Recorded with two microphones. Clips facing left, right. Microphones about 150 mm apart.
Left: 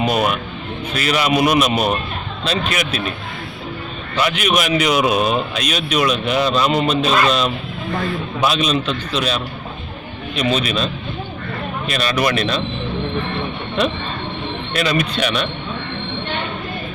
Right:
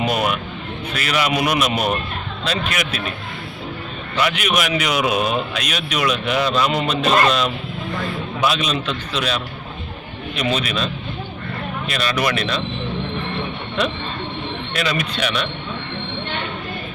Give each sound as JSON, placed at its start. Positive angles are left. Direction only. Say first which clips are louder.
{"t": 0.0, "sound": "a sound", "louder": "left 2 dB", "side_deg": 30}
{"t": 0.9, "sound": "a man's voice", "louder": "left 3 dB", "side_deg": 30}
{"t": 4.2, "sound": "a man's voice", "louder": "left 2 dB", "side_deg": 30}
{"t": 11.9, "sound": "speech", "louder": "left 2 dB", "side_deg": 35}
{"t": 14.7, "sound": "speech", "louder": "left 4 dB", "side_deg": 40}